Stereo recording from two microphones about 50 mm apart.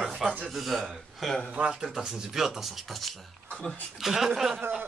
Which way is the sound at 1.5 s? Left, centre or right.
Right.